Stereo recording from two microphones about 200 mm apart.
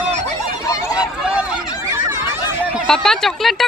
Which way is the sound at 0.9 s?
5° right (ahead or behind).